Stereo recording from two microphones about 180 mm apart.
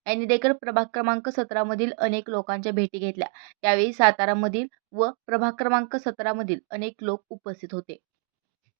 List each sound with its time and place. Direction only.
0.0 s speech: 20° right (ahead or behind)